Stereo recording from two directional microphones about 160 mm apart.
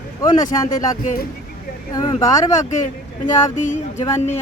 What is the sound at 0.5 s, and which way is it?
Speech, 20° left (ahead or behind).